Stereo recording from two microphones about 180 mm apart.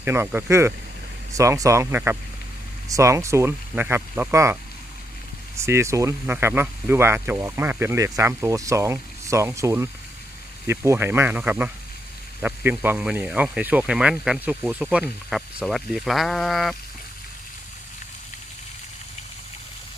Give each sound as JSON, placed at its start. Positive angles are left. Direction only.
{"t": 0.0, "sound": "speech", "side_deg": -10}
{"t": 5.5, "sound": "speech", "side_deg": -15}